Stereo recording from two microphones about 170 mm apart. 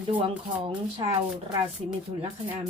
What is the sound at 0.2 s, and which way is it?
Speech, 30° right (ahead or behind).